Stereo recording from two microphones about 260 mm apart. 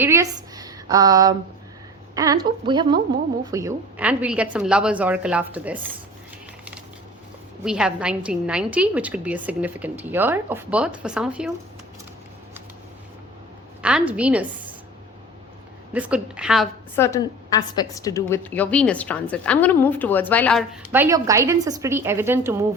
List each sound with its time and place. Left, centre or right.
0.0 s a woman's voice: centre
7.6 s a woman's voice: centre
13.8 s a woman's voice: centre
15.9 s a woman's voice: centre
16.9 s a woman's voice: centre
20.9 s a woman's voice: centre